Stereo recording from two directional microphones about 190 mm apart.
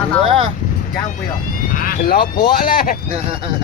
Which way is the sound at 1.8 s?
50° left (ahead or behind).